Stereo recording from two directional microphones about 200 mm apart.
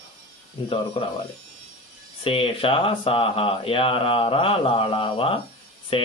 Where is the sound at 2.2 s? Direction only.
25° left (ahead or behind).